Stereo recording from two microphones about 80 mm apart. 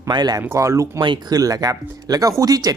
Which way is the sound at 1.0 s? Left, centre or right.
Right.